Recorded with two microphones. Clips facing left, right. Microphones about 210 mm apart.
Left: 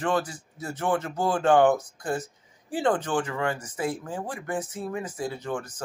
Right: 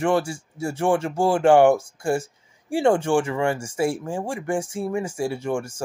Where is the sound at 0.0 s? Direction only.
25° right (ahead or behind).